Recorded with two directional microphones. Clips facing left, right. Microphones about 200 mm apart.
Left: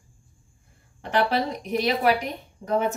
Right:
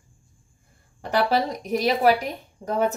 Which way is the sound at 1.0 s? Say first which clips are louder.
Right 1 dB; 40° right (ahead or behind).